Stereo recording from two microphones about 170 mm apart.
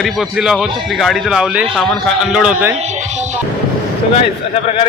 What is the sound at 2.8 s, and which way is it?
Music, 40° right (ahead or behind).